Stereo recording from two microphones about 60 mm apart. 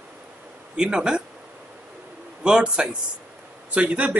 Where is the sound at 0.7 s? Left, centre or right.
Centre.